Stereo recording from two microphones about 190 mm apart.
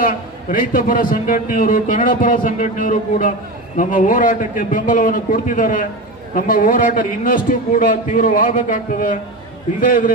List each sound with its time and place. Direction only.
0.0 s a man's voice: 45° left (ahead or behind)